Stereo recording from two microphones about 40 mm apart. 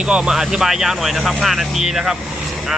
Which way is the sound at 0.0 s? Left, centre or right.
Right.